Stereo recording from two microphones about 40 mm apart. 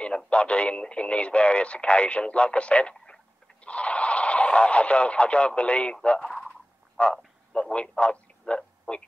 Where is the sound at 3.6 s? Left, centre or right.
Left.